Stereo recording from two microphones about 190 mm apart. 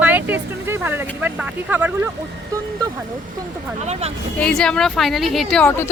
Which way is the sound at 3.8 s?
35° right (ahead or behind).